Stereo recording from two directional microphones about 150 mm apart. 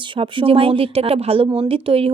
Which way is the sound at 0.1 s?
35° right (ahead or behind).